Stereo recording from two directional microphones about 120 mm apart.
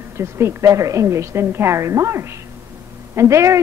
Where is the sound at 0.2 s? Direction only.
20° right (ahead or behind).